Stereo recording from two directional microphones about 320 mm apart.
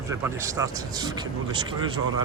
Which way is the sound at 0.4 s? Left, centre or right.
Centre.